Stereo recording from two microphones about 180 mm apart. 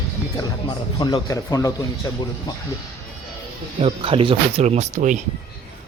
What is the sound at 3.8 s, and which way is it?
Speech, 30° right (ahead or behind).